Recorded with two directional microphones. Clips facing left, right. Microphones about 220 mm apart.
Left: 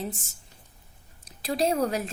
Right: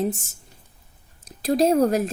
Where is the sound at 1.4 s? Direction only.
45° right (ahead or behind).